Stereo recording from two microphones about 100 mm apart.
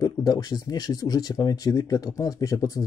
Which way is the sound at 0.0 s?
40° left (ahead or behind).